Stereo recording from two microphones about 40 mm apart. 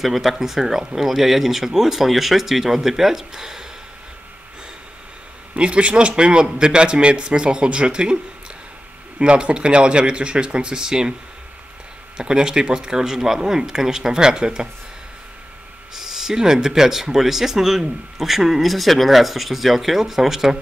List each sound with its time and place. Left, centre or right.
0.0 s speech: centre
5.6 s a man's voice: right
9.2 s a man's voice: right
12.2 s a man's voice: right
15.9 s speech: centre